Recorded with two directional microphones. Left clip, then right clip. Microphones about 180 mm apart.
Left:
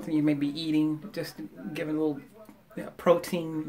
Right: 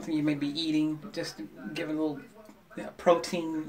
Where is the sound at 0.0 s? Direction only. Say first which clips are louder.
Left 3 dB; 40° left (ahead or behind).